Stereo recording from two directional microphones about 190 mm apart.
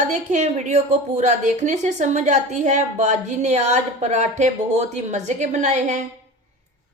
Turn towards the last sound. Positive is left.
turn(degrees=-40)  # may be behind; listen again after turning